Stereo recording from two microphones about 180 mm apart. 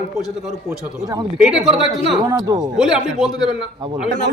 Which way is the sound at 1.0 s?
20° right (ahead or behind).